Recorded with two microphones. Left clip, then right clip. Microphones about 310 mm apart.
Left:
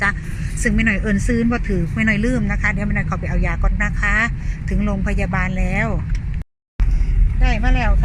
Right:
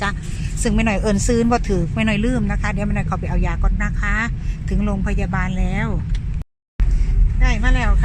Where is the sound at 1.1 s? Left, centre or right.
Right.